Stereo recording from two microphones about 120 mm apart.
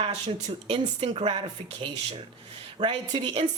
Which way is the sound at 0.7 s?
50° right (ahead or behind).